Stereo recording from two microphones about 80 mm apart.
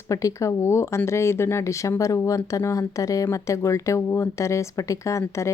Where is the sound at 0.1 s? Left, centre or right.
Left.